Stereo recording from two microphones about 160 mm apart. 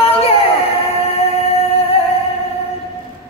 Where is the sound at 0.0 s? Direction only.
35° left (ahead or behind).